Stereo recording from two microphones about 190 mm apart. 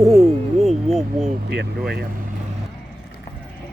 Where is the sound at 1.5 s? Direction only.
60° right (ahead or behind).